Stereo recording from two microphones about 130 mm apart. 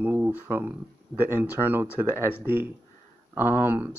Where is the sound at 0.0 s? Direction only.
15° right (ahead or behind).